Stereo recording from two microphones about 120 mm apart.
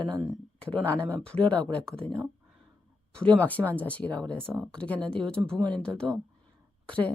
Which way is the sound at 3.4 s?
15° left (ahead or behind).